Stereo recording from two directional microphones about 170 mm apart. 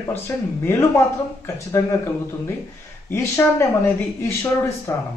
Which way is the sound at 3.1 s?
15° left (ahead or behind).